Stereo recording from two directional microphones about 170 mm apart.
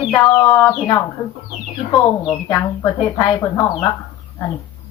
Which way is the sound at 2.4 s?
15° left (ahead or behind).